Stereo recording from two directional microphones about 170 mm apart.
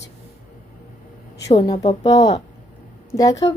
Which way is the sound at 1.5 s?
25° left (ahead or behind).